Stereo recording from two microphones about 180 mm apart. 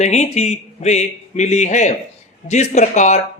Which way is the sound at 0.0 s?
40° left (ahead or behind).